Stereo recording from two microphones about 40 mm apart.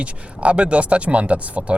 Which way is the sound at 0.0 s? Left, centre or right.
Right.